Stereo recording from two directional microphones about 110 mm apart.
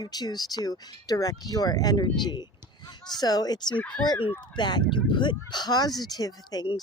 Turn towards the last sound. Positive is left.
turn(degrees=35)  # may be behind; listen again after turning